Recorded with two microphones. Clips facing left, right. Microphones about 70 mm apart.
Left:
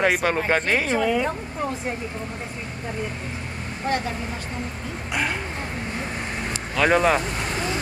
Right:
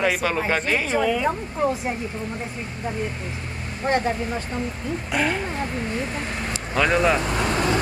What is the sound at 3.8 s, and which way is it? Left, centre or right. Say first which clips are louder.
Speech: right 3 dB; right.